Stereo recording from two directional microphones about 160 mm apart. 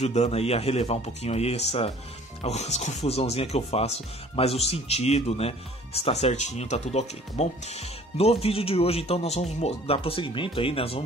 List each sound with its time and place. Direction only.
0.0 s speech: 45° left (ahead or behind)